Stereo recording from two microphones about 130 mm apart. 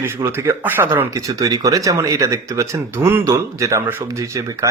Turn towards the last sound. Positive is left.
turn(degrees=-25)  # may be behind; listen again after turning